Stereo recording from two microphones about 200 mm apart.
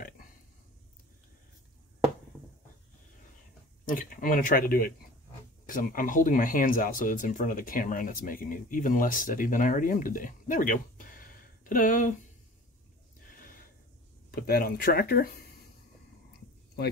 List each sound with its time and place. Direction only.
3.8 s speech: 45° left (ahead or behind)
14.3 s speech: 45° left (ahead or behind)